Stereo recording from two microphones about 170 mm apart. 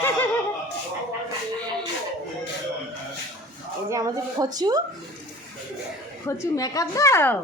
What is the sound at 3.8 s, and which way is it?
Speech, 20° right (ahead or behind).